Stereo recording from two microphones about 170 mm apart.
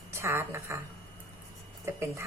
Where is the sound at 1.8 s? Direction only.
15° right (ahead or behind).